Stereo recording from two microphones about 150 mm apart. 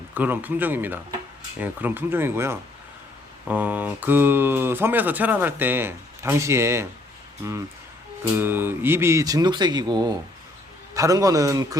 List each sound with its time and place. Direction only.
0.1 s speech: 10° right (ahead or behind)
8.4 s speech: 15° right (ahead or behind)